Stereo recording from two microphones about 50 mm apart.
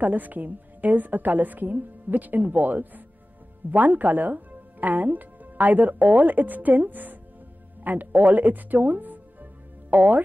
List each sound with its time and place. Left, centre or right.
0.0 s speech: right